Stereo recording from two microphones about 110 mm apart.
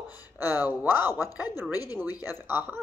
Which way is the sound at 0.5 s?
20° right (ahead or behind).